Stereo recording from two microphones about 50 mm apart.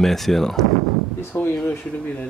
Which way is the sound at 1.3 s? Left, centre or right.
Left.